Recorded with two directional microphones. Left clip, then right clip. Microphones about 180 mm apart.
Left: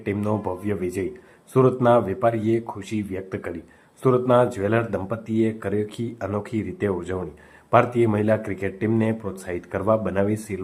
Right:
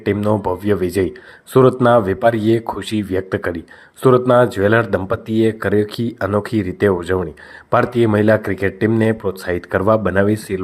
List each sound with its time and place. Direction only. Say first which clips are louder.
0.0 s speech: right 8 dB; 30° right (ahead or behind)